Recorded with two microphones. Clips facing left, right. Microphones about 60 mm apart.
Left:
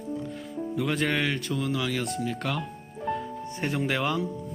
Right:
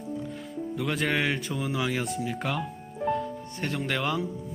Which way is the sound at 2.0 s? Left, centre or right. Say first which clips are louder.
Even; centre.